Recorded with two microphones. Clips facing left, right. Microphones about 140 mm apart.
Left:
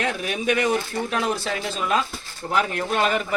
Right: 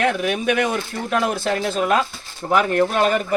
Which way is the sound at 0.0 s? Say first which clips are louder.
Right 5 dB; 55° right (ahead or behind).